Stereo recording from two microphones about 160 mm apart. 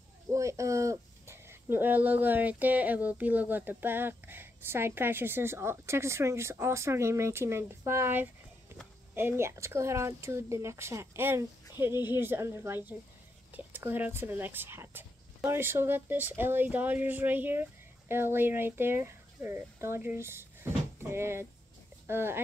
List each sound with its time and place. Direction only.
0.3 s speech: 20° right (ahead or behind)